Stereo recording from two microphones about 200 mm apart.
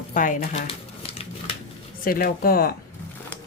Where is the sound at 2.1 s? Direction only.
45° left (ahead or behind).